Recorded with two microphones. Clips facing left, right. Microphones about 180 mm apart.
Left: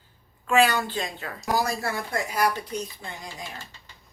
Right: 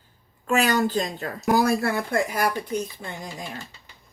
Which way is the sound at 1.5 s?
55° right (ahead or behind).